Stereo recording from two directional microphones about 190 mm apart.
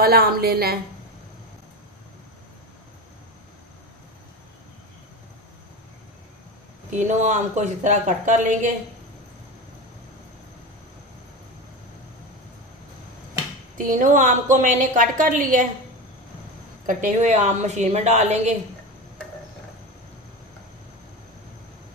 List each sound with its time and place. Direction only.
0.0 s a woman's voice: 55° right (ahead or behind)
6.9 s speech: 40° right (ahead or behind)
13.7 s a woman's voice: 45° right (ahead or behind)
16.8 s speech: 40° right (ahead or behind)